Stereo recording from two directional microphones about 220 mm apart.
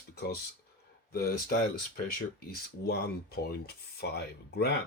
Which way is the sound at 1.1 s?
45° left (ahead or behind).